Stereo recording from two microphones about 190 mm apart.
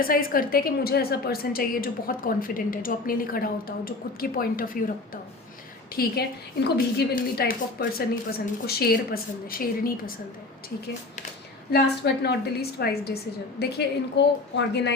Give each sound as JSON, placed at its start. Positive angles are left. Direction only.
{"t": 0.0, "sound": "a woman's voice", "side_deg": 50}
{"t": 11.7, "sound": "a woman's voice", "side_deg": 60}